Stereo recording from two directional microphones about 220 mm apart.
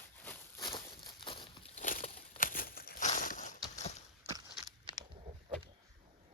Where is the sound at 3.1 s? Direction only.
35° left (ahead or behind).